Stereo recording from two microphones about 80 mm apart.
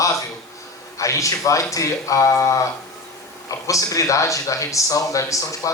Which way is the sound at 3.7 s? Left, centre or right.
Left.